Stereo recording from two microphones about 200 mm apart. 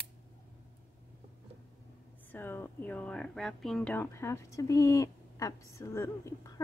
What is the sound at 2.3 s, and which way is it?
A woman's voice, 10° left (ahead or behind).